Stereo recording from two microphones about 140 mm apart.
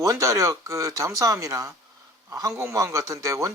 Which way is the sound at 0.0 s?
20° right (ahead or behind).